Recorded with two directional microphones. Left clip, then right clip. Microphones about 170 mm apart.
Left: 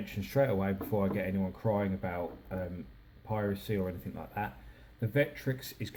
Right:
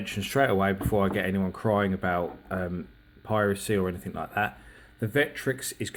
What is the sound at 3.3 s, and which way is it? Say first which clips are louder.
Speech: right 9 dB; 50° right (ahead or behind).